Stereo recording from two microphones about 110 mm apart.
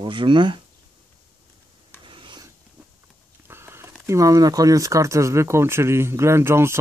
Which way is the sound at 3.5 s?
20° right (ahead or behind).